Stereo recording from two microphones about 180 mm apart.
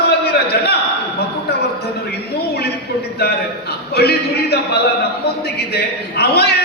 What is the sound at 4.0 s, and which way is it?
A man's voice, 65° left (ahead or behind).